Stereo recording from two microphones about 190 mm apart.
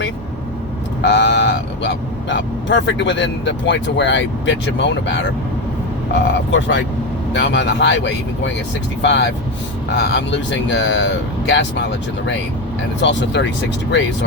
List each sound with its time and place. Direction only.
1.0 s speech: 70° left (ahead or behind)